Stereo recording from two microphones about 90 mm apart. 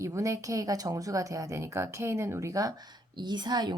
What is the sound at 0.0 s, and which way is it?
A woman's voice, 35° right (ahead or behind).